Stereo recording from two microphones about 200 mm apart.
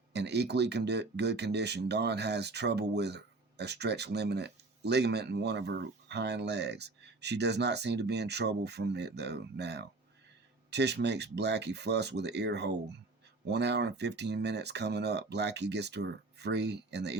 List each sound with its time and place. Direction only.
0.1 s speech: 55° right (ahead or behind)